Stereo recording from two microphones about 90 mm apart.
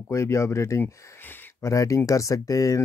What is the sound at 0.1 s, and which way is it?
Speech, 30° left (ahead or behind).